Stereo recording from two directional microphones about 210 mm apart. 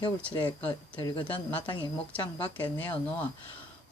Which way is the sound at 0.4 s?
20° left (ahead or behind).